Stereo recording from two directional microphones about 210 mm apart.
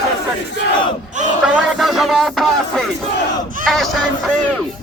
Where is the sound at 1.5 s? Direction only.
Centre (ahead or behind).